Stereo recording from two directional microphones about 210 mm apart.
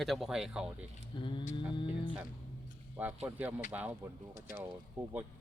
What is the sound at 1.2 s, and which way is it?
Speech, 25° left (ahead or behind).